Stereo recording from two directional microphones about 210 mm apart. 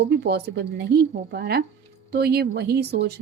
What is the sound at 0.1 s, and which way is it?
A woman's voice, 50° right (ahead or behind).